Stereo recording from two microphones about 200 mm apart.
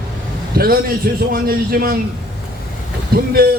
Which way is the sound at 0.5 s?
50° right (ahead or behind).